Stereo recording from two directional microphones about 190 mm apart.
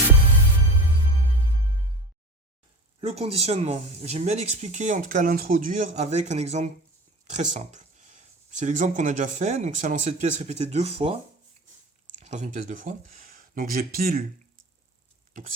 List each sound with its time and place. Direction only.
3.0 s speech: 30° right (ahead or behind)
12.2 s speech: 40° right (ahead or behind)